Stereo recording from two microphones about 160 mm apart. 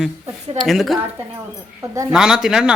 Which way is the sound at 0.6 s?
Centre (ahead or behind).